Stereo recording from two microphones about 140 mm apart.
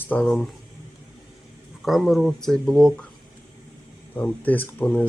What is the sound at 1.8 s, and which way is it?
Speech, centre (ahead or behind).